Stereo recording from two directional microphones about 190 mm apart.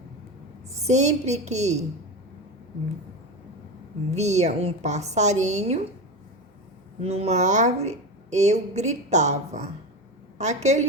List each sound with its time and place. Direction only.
0.9 s a woman's voice: 35° right (ahead or behind)
4.1 s a woman's voice: 35° right (ahead or behind)
7.0 s a woman's voice: 35° right (ahead or behind)